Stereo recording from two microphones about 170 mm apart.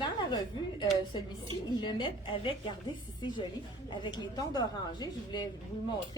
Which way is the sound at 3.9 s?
25° left (ahead or behind).